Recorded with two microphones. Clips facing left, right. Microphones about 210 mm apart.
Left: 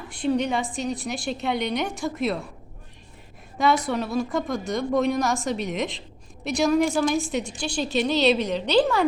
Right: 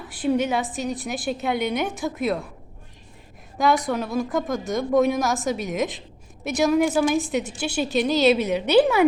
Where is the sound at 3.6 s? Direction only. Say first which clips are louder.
Right 1 dB; centre (ahead or behind).